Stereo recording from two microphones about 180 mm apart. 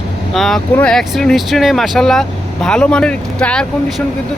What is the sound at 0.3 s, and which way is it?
Speech, centre (ahead or behind).